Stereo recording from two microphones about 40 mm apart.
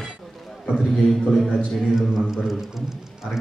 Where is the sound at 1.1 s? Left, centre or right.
Centre.